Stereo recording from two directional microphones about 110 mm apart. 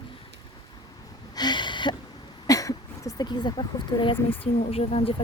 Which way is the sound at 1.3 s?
40° left (ahead or behind).